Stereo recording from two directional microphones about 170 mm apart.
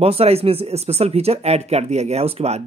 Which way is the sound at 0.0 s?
35° right (ahead or behind).